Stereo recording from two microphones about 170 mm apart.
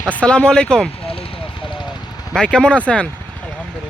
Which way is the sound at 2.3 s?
5° left (ahead or behind).